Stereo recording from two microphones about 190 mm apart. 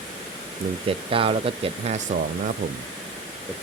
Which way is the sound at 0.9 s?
30° right (ahead or behind).